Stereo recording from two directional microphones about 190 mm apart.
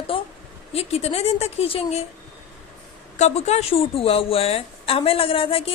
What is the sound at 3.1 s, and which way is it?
A woman's voice, 35° left (ahead or behind).